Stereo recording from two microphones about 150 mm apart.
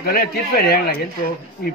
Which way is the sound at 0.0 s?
90° left.